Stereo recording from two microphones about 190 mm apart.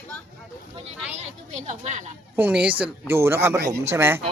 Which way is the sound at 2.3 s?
10° right (ahead or behind).